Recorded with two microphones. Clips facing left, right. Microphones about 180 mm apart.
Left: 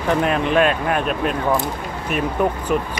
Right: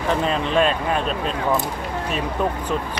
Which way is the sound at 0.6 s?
60° left (ahead or behind).